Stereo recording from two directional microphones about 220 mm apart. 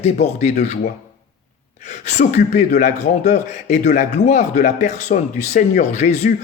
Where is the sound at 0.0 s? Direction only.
30° left (ahead or behind).